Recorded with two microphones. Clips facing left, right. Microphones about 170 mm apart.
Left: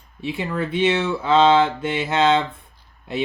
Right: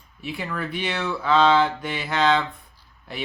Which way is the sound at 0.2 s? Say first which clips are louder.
Left 5 dB; 25° left (ahead or behind).